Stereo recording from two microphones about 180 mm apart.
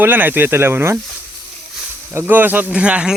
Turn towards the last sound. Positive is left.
turn(degrees=-5)  # may be behind; listen again after turning